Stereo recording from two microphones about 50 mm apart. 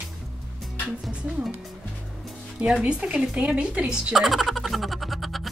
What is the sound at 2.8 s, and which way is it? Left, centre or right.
Speech, right.